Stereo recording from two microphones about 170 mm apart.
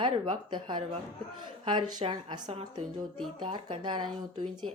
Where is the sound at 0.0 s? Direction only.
30° right (ahead or behind).